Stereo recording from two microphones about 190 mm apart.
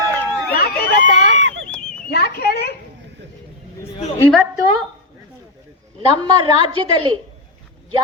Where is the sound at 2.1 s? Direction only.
55° left (ahead or behind).